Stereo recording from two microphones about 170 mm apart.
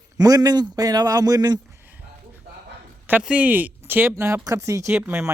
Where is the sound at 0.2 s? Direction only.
20° right (ahead or behind).